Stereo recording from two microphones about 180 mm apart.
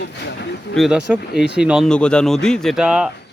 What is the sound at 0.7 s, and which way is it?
Speech, 5° right (ahead or behind).